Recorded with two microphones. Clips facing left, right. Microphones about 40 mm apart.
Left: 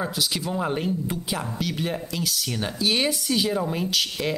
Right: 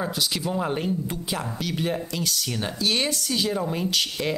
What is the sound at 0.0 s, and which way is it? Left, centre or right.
Speech, centre.